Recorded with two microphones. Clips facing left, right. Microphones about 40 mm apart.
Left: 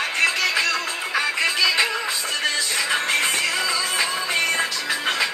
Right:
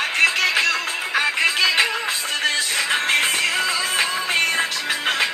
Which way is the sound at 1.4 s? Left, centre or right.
Right.